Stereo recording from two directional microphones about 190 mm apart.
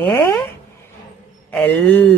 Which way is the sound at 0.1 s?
15° left (ahead or behind).